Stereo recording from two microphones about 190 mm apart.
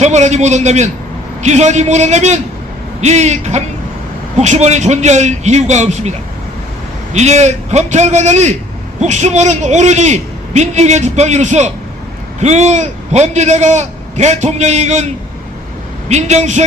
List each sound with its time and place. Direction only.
0.0 s a man's voice: 35° right (ahead or behind)
16.0 s a man's voice: 35° right (ahead or behind)